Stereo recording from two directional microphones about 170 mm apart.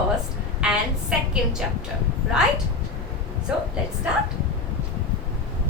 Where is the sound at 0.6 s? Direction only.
5° right (ahead or behind).